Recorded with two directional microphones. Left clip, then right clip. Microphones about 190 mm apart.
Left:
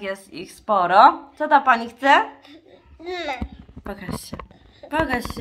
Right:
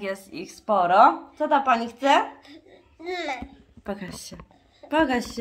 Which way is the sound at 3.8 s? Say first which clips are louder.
Left 1 dB; 40° right (ahead or behind).